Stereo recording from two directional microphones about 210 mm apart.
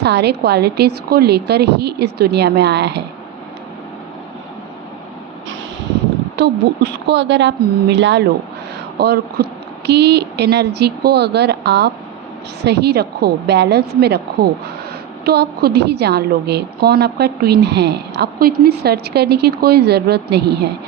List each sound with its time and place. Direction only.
0.0 s a woman's voice: 50° right (ahead or behind)
6.3 s a woman's voice: 55° right (ahead or behind)
15.2 s a woman's voice: 50° right (ahead or behind)